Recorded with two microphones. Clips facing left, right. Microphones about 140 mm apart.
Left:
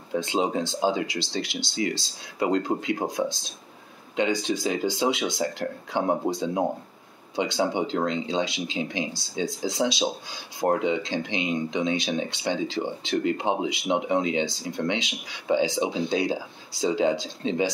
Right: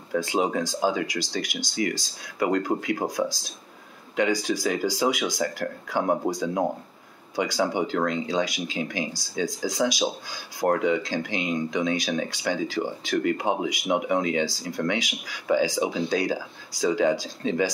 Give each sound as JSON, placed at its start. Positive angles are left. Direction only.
{"t": 0.1, "sound": "speech", "side_deg": 20}